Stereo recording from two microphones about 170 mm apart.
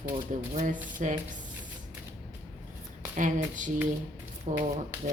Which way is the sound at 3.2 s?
50° right (ahead or behind).